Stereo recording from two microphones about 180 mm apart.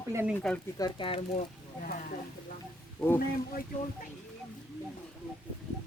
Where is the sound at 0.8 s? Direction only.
30° left (ahead or behind).